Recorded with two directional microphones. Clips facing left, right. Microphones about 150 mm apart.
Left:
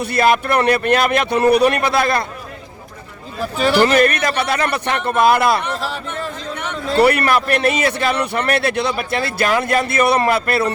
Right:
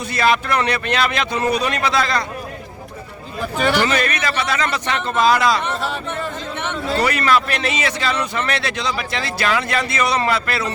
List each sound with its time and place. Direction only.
0.0 s a man's voice: 55° left (ahead or behind)
3.9 s a man's voice: 50° left (ahead or behind)
5.7 s speech: centre (ahead or behind)
7.0 s a man's voice: 60° left (ahead or behind)